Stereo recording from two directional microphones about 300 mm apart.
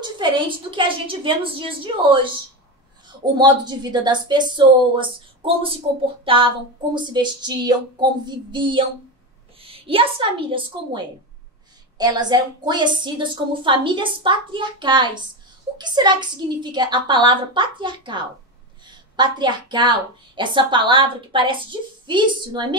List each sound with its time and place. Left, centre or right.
0.0 s a woman's voice: centre
3.3 s a woman's voice: centre